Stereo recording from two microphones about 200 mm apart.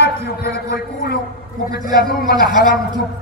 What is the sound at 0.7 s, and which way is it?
Speech, 50° left (ahead or behind).